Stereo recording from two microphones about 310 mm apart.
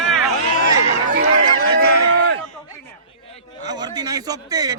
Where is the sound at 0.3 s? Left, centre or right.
Left.